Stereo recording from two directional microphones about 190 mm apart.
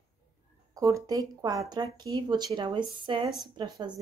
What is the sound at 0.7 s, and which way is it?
Speech, 15° right (ahead or behind).